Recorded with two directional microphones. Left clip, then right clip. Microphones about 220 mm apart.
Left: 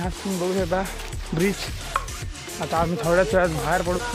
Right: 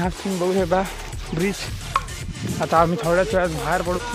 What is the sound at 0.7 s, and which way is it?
Speech, 30° right (ahead or behind).